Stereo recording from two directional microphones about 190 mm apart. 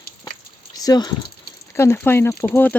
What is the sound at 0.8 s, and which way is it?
Speech, 20° left (ahead or behind).